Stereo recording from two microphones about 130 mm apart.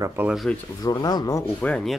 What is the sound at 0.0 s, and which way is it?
Speech, 15° right (ahead or behind).